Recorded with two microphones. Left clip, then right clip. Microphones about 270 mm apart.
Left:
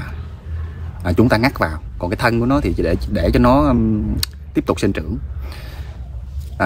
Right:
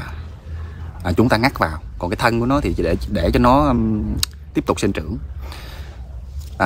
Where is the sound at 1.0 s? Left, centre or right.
Centre.